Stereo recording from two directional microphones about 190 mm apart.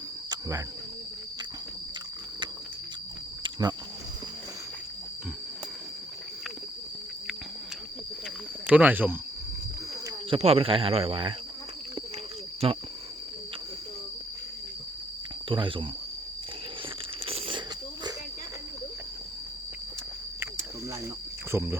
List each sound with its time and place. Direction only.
0.3 s cricket: 15° right (ahead or behind)
3.4 s cricket: 20° right (ahead or behind)
8.6 s speech: 5° right (ahead or behind)
10.2 s speech: 30° right (ahead or behind)
12.6 s speech: 30° right (ahead or behind)
15.4 s speech: 25° right (ahead or behind)
17.2 s a sound: 30° right (ahead or behind)
21.5 s speech: 15° right (ahead or behind)